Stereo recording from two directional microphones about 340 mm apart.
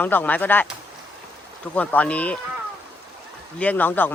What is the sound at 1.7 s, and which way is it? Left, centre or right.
Speech, centre.